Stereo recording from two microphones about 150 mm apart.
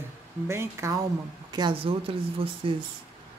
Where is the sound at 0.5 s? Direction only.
20° right (ahead or behind).